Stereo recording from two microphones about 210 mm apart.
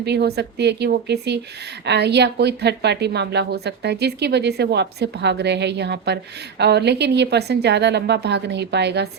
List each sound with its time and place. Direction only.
0.0 s speech: 50° right (ahead or behind)